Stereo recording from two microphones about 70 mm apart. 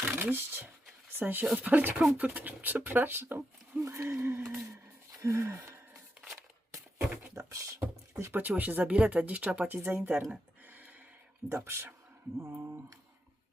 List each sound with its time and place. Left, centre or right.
0.2 s speech: right
7.1 s a sound: centre
7.3 s beatboxing: right
8.1 s speech: right
8.4 s speech: right
10.7 s a sound: right
11.4 s speech: right